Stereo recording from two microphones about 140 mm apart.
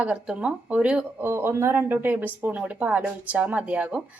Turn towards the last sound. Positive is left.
turn(degrees=-10)  # may be behind; listen again after turning